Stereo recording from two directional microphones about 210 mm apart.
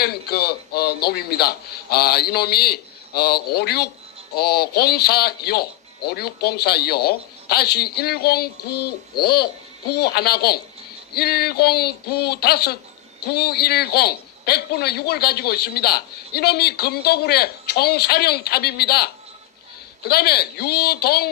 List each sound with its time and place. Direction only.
0.0 s a man's voice: 50° left (ahead or behind)
20.1 s a man's voice: 50° left (ahead or behind)